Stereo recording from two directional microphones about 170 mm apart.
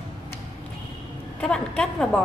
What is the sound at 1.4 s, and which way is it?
Speech, 5° left (ahead or behind).